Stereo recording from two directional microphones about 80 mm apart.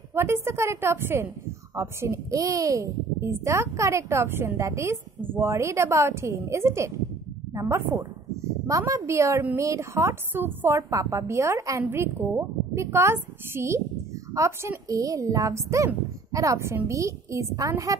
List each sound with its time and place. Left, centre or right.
0.1 s speech: right
1.8 s a woman's voice: right